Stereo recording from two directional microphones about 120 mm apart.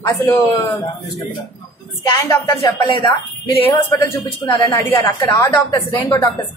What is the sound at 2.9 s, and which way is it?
Speech, 45° left (ahead or behind).